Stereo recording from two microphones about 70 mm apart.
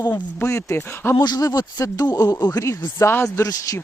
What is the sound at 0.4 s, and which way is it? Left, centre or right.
Speech, left.